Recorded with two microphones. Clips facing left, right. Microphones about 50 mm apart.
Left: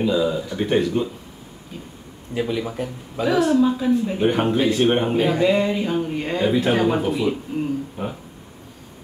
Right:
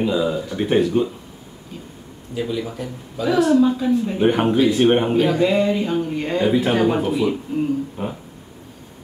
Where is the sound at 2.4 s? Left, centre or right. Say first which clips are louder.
Left 1 dB; left.